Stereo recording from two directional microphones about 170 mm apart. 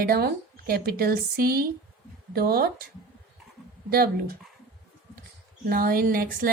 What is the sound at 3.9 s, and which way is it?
Speech, 65° right (ahead or behind).